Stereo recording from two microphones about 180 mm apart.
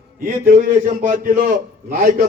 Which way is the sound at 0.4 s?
50° right (ahead or behind).